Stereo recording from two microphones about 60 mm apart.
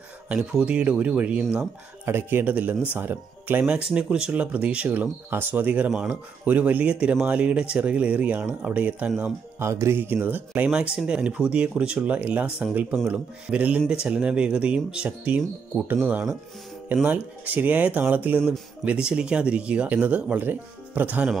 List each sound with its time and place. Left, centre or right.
0.3 s speech: centre
2.0 s speech: right
3.6 s speech: right
9.6 s speech: right
10.0 s speech: right
10.7 s speech: centre; by 18.4 s right
18.9 s speech: centre